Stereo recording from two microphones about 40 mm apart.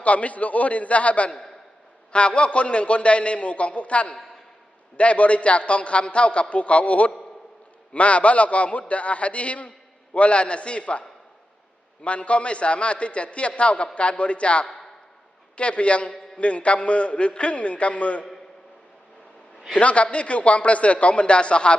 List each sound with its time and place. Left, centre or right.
0.0 s a man's voice: left
19.8 s a man's voice: left